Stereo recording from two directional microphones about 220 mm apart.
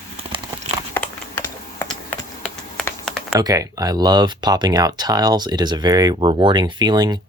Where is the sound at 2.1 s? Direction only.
10° left (ahead or behind).